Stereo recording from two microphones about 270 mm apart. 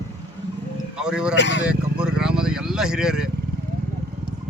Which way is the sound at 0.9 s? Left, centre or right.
Centre.